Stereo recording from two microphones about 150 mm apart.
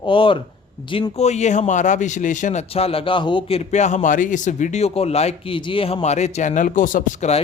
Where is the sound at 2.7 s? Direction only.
40° left (ahead or behind).